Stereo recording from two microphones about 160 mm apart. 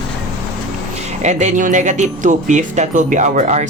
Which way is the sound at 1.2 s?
45° right (ahead or behind).